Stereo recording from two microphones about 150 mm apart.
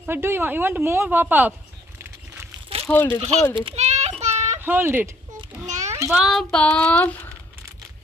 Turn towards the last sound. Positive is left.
turn(degrees=10)  # may be behind; listen again after turning